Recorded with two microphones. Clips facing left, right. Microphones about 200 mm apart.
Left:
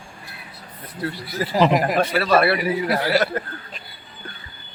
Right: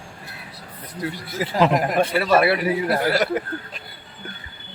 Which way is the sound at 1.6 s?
Centre (ahead or behind).